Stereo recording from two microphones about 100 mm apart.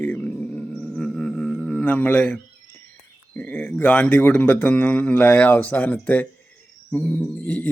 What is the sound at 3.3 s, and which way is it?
Speech, 15° left (ahead or behind).